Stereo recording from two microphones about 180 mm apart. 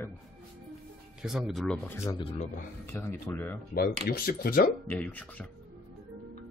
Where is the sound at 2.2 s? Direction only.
30° left (ahead or behind).